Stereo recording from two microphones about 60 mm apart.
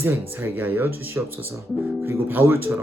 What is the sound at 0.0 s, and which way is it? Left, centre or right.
Speech, right.